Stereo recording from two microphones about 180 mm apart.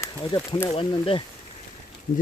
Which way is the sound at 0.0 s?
20° left (ahead or behind).